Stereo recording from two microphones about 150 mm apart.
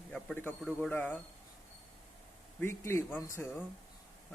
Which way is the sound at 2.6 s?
15° left (ahead or behind).